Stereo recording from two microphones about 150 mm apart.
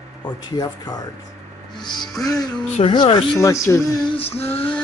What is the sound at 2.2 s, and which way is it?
Speech, 25° left (ahead or behind).